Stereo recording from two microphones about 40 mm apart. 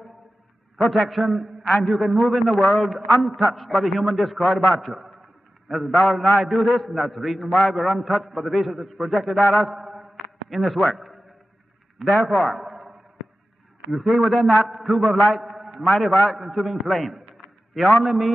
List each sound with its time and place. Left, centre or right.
0.8 s a man's voice: centre
1.9 s a man's voice: centre
2.1 s a man's voice: centre
9.4 s a man's voice: centre
9.7 s a sound: centre
10.5 s a man's voice: centre
12.3 s a man's voice: centre
13.9 s a man's voice: centre